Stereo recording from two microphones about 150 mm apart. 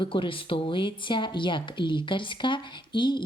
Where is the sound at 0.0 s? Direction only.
35° left (ahead or behind).